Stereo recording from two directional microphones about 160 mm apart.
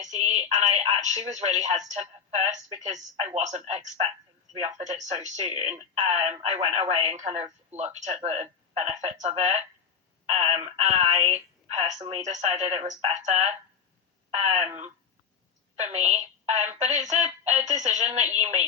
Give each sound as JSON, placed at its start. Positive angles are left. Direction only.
{"t": 0.0, "sound": "speech", "side_deg": -45}